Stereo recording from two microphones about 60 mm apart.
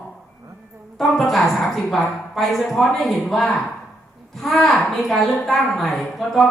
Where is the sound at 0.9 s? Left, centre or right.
Centre.